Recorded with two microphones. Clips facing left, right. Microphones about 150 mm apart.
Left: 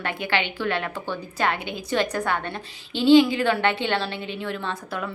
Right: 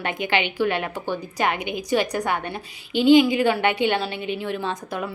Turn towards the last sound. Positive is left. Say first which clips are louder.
# right 2 dB
turn(degrees=-20)  # may be behind; listen again after turning